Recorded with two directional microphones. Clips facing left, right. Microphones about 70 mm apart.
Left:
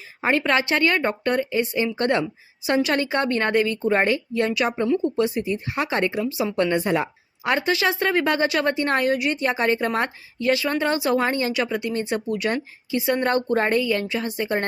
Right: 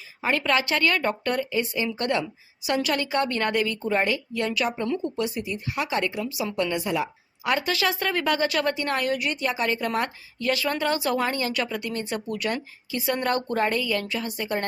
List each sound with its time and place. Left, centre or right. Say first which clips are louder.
0.2 s a woman's voice: left 3 dB; left
7.4 s a woman's voice: left 3 dB; left